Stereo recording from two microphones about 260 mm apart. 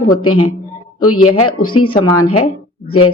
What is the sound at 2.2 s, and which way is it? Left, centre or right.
Speech, left.